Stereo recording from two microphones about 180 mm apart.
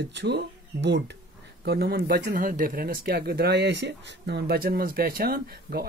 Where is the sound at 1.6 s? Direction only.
60° right (ahead or behind).